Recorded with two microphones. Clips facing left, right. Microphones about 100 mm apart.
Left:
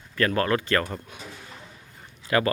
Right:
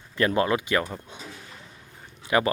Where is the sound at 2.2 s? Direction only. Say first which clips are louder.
Even; 20° right (ahead or behind).